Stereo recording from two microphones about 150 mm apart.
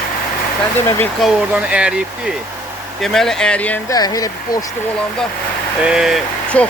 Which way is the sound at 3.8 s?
25° left (ahead or behind).